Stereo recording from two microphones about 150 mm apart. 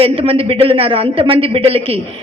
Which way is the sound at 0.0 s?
40° right (ahead or behind).